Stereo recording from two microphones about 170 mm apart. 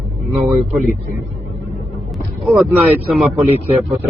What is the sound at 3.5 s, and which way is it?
Speech, 35° right (ahead or behind).